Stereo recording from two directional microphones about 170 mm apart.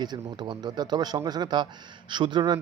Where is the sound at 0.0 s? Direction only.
25° right (ahead or behind).